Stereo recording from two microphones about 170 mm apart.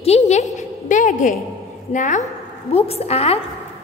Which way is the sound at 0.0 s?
40° left (ahead or behind).